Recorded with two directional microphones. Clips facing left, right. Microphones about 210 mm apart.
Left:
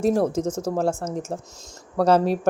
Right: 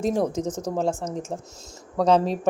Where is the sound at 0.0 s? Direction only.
5° left (ahead or behind).